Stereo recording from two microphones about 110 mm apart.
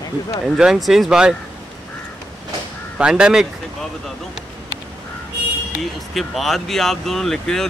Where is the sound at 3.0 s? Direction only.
10° right (ahead or behind).